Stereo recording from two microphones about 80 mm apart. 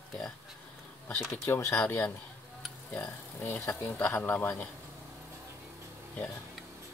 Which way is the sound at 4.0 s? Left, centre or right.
Centre.